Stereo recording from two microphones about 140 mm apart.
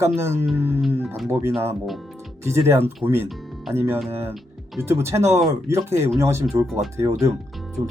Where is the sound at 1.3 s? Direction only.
15° right (ahead or behind).